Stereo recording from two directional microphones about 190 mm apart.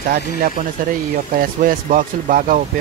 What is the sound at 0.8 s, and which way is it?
Speech, 45° right (ahead or behind).